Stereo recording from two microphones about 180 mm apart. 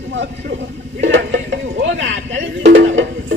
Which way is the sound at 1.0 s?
85° right.